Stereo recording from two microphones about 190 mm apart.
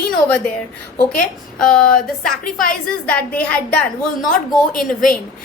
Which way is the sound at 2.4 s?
45° left (ahead or behind).